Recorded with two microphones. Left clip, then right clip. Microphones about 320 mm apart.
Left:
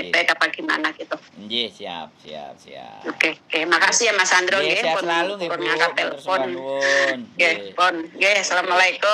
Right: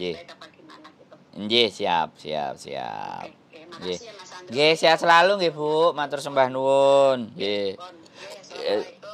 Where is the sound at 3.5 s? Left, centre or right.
Left.